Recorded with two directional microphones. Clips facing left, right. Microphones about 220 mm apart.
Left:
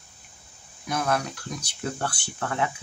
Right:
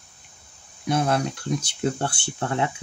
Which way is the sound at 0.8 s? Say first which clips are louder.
Right 4 dB; 30° right (ahead or behind).